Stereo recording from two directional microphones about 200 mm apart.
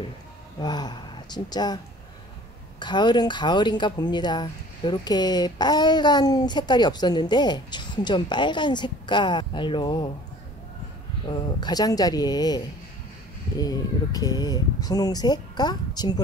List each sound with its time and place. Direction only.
0.6 s speech: 20° left (ahead or behind)
2.8 s a woman's voice: 20° left (ahead or behind)
11.2 s a woman's voice: 20° left (ahead or behind)